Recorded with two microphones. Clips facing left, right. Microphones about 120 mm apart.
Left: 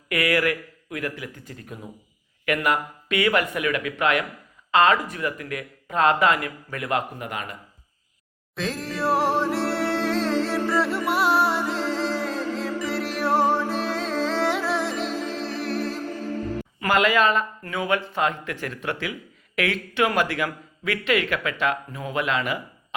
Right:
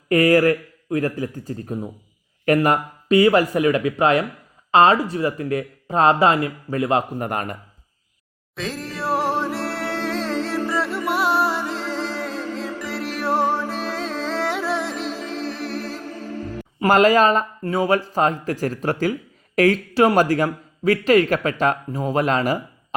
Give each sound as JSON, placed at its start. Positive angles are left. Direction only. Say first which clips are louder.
{"t": 0.1, "sound": "a man's voice", "louder": "right 8 dB", "side_deg": -40}
{"t": 7.2, "sound": "a man's voice", "louder": "right 7 dB", "side_deg": -45}
{"t": 8.5, "sound": "music", "louder": "even", "side_deg": 0}
{"t": 16.8, "sound": "a man's voice", "louder": "right 6 dB", "side_deg": -40}